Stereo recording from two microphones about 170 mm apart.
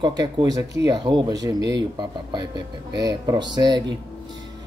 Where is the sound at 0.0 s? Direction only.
25° right (ahead or behind).